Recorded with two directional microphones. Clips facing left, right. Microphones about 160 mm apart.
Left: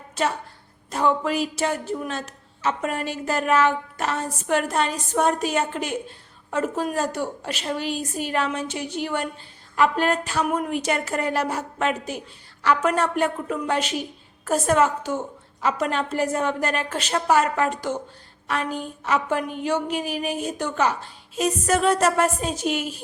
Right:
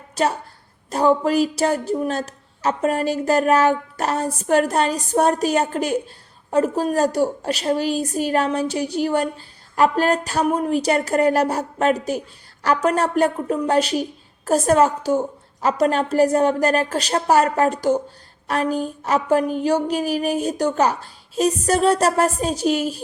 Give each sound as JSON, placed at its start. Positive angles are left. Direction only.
{"t": 0.2, "sound": "a woman's voice", "side_deg": -40}